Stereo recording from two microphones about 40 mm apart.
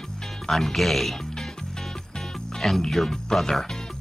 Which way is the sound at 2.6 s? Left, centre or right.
Centre.